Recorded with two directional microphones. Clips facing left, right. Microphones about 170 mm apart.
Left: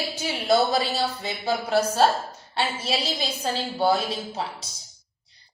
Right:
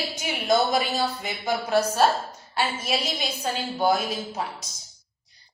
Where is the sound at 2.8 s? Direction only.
30° left (ahead or behind).